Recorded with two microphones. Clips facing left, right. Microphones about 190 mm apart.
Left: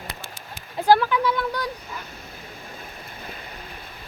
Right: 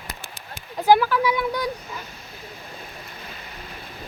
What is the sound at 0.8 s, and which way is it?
Speech, 10° right (ahead or behind).